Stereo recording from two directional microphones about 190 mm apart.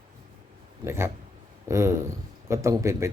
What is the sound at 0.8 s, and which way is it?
A man's voice, 15° right (ahead or behind).